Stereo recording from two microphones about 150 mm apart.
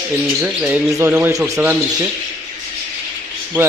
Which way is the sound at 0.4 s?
10° right (ahead or behind).